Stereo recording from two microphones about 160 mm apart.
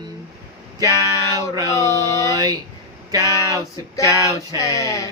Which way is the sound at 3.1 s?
20° right (ahead or behind).